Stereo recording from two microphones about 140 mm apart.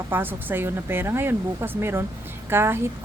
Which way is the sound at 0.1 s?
15° right (ahead or behind).